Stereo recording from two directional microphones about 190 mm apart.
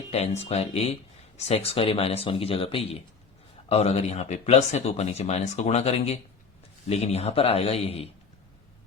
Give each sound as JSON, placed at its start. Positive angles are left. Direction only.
{"t": 0.1, "sound": "speech", "side_deg": 35}